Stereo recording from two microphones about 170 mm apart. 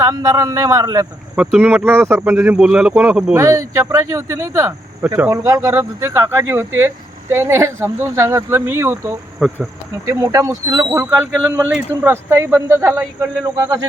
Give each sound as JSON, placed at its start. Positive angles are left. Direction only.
{"t": 0.0, "sound": "a man's voice", "side_deg": -20}
{"t": 1.4, "sound": "speech", "side_deg": -5}
{"t": 3.3, "sound": "speech", "side_deg": -20}
{"t": 9.4, "sound": "insect", "side_deg": 0}
{"t": 10.1, "sound": "speech", "side_deg": -20}